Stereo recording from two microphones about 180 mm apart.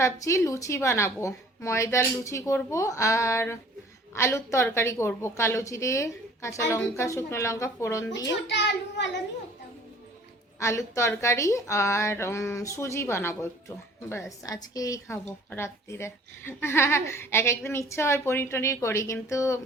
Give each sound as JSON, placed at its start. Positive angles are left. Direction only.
{"t": 0.0, "sound": "a woman's voice", "side_deg": 15}
{"t": 8.3, "sound": "a child's voice", "side_deg": 75}
{"t": 10.6, "sound": "a woman's voice", "side_deg": 15}